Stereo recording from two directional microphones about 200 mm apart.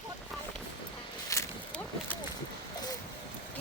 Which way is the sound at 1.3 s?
10° left (ahead or behind).